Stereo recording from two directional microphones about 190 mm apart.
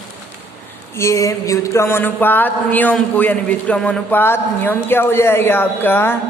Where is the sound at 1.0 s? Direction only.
15° left (ahead or behind).